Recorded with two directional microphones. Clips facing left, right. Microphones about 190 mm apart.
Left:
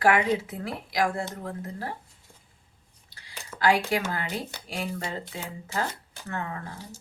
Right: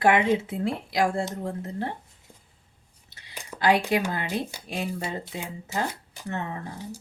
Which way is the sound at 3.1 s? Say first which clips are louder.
Right 2 dB; 15° right (ahead or behind).